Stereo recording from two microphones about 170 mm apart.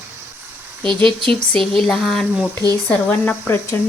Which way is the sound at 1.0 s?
30° right (ahead or behind).